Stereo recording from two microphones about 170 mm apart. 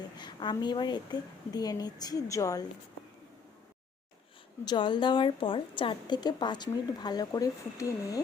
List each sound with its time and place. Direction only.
0.2 s a woman's voice: 25° left (ahead or behind)
4.6 s a woman's voice: 25° left (ahead or behind)